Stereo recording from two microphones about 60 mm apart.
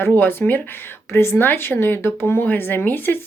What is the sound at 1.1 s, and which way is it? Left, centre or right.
Speech, left.